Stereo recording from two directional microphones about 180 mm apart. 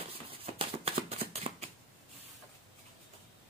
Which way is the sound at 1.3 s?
35° right (ahead or behind).